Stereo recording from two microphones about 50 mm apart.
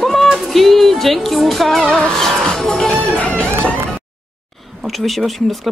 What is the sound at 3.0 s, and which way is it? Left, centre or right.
Music, left.